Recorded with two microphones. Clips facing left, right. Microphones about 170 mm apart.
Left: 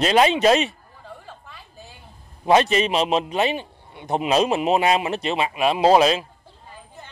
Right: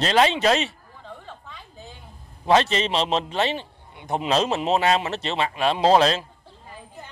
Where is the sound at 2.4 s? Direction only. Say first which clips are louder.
Left 2 dB; 15° left (ahead or behind).